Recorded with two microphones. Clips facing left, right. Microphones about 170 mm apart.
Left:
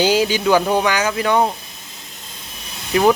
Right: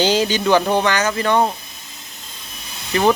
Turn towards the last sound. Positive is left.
turn(degrees=10)  # may be behind; listen again after turning